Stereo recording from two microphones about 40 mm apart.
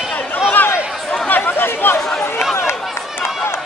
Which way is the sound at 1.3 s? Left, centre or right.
Left.